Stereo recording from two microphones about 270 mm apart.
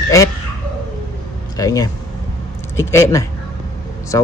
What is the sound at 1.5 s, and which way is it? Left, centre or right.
A man's voice, centre.